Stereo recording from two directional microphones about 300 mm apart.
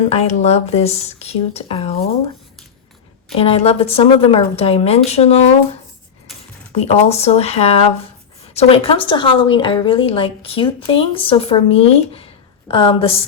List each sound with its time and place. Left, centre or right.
0.1 s a woman's voice: left
3.3 s a woman's voice: centre
6.7 s a woman's voice: left